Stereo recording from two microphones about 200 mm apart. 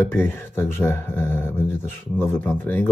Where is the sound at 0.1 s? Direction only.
10° left (ahead or behind).